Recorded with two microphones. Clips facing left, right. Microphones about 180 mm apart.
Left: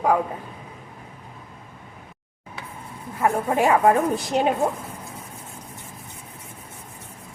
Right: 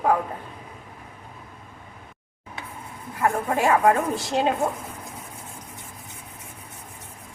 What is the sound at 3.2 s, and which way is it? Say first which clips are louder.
A woman's voice: left 2 dB; 20° left (ahead or behind).